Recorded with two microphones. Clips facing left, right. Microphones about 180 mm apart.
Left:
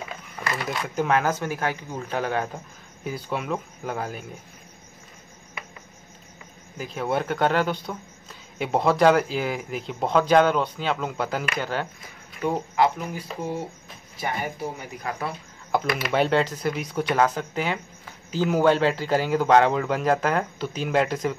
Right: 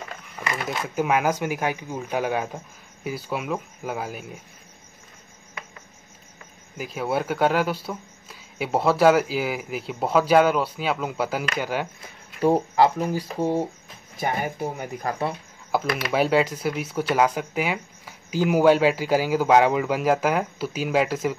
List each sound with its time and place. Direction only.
0.6 s speech: centre (ahead or behind)
6.8 s speech: 5° right (ahead or behind)
12.4 s speech: 35° right (ahead or behind)
14.1 s speech: 50° right (ahead or behind)
15.7 s speech: centre (ahead or behind)